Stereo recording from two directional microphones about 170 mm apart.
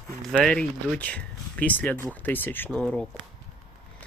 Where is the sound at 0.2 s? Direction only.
5° left (ahead or behind).